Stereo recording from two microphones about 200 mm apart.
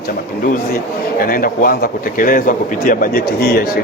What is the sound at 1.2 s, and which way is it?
A man's voice, 45° left (ahead or behind).